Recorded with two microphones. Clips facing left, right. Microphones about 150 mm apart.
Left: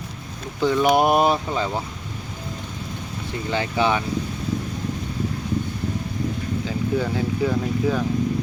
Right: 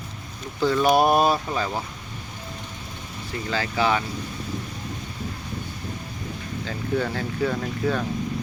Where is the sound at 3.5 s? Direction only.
20° left (ahead or behind).